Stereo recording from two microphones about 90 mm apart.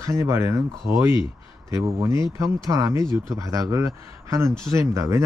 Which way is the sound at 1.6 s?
35° right (ahead or behind).